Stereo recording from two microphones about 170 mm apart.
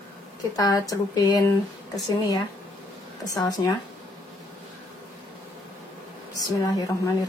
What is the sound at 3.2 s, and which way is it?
Speech, 20° left (ahead or behind).